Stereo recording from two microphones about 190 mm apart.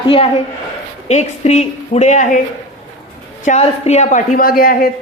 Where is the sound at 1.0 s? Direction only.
35° left (ahead or behind).